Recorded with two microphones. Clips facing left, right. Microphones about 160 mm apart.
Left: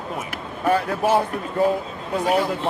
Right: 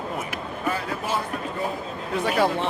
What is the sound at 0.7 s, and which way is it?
Speech, 60° left (ahead or behind).